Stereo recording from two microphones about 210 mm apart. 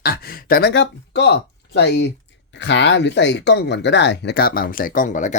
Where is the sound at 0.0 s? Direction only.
45° left (ahead or behind).